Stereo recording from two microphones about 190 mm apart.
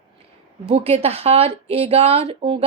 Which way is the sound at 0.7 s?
35° right (ahead or behind).